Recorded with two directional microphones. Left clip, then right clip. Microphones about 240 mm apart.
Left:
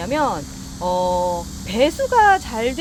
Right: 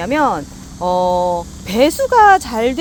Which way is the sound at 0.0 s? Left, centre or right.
Right.